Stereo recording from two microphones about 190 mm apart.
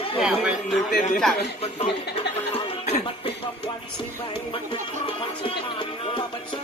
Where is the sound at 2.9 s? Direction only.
35° left (ahead or behind).